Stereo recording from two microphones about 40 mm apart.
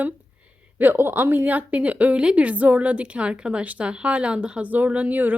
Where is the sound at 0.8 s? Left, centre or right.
Right.